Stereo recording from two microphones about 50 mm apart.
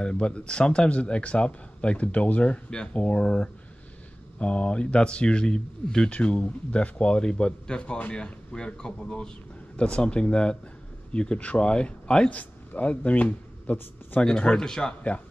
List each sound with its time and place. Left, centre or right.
0.0 s speech: left
6.0 s speech: left
14.2 s speech: centre